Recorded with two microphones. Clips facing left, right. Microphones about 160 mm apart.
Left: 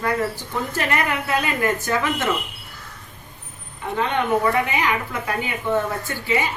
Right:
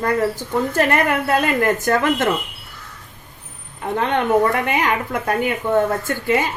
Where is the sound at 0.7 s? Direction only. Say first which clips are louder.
Right 5 dB; 45° right (ahead or behind).